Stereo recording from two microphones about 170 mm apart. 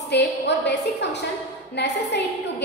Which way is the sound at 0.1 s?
80° left.